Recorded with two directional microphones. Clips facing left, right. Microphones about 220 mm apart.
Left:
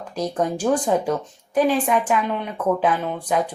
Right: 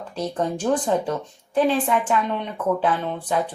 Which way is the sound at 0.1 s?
10° left (ahead or behind).